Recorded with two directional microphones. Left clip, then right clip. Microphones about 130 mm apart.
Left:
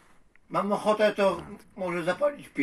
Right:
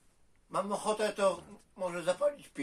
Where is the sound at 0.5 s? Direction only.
40° right (ahead or behind).